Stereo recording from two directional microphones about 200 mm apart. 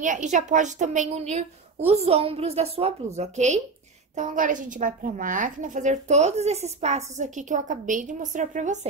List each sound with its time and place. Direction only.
0.0 s a woman's voice: 35° right (ahead or behind)